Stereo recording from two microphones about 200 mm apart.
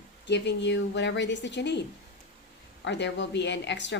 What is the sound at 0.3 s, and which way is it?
Speech, 60° left (ahead or behind).